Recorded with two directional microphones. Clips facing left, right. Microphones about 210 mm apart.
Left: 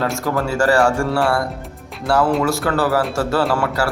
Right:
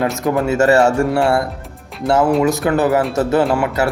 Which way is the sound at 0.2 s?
20° right (ahead or behind).